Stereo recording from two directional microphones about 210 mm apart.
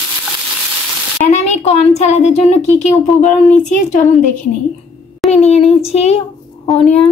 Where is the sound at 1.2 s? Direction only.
35° left (ahead or behind).